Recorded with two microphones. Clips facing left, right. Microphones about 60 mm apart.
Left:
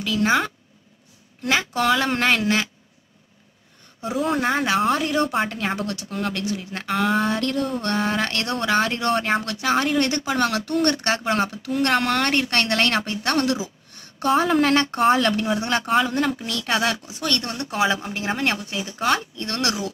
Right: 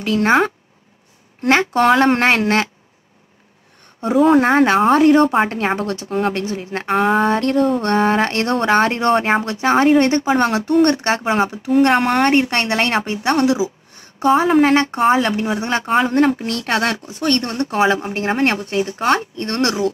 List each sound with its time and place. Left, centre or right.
0.0 s a woman's voice: right
4.4 s a woman's voice: right
15.9 s speech: right